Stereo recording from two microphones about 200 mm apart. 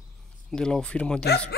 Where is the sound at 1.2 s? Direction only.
55° left (ahead or behind).